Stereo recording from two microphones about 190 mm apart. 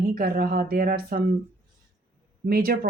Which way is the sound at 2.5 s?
50° right (ahead or behind).